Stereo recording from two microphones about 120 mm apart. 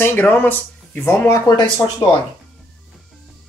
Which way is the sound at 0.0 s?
20° left (ahead or behind).